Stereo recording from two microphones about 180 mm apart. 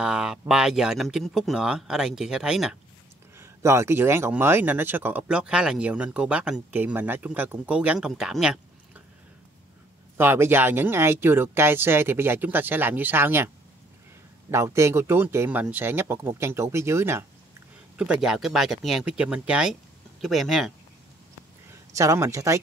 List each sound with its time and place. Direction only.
0.0 s speech: 5° right (ahead or behind)
3.3 s speech: 15° right (ahead or behind)
10.1 s speech: 15° right (ahead or behind)
14.5 s speech: 15° right (ahead or behind); by 20.7 s centre (ahead or behind)
21.9 s speech: 15° right (ahead or behind)